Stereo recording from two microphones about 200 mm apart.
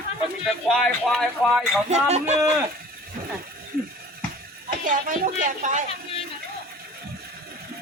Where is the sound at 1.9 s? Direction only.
35° right (ahead or behind).